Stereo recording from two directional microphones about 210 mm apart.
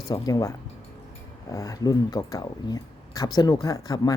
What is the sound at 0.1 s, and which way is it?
Speech, 15° left (ahead or behind).